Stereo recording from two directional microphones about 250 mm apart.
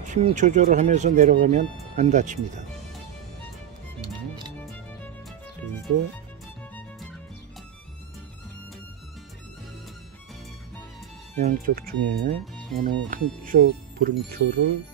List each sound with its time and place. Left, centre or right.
0.0 s speech: right
11.3 s speech: right